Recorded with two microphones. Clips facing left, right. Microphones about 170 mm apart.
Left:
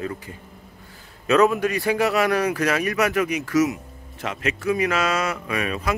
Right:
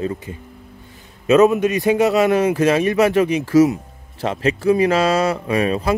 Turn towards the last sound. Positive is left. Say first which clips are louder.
# right 7 dB
turn(degrees=-30)  # may be behind; listen again after turning